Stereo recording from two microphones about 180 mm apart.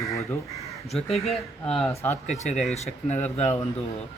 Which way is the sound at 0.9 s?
35° left (ahead or behind).